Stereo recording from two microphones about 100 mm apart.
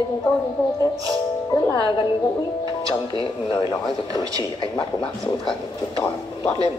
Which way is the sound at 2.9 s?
60° left (ahead or behind).